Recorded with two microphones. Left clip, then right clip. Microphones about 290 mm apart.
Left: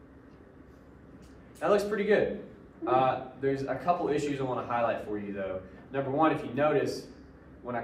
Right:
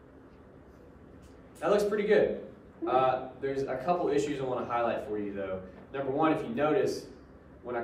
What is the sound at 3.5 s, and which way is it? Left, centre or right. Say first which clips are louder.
A man's voice: right 1 dB; left.